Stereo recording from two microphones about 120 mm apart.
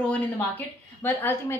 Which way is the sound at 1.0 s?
15° left (ahead or behind).